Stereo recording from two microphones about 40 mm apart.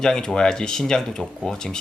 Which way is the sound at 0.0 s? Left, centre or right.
Centre.